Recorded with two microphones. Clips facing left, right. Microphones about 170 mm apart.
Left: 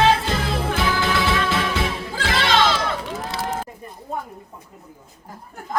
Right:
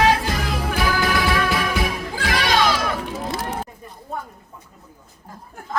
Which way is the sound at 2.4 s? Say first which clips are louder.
Even; 25° left (ahead or behind).